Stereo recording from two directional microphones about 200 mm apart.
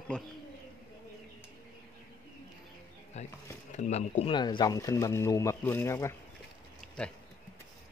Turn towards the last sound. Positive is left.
turn(degrees=0)  # may be behind; listen again after turning